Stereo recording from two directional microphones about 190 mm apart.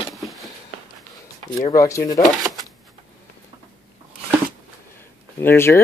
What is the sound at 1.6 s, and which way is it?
Speech, 15° left (ahead or behind).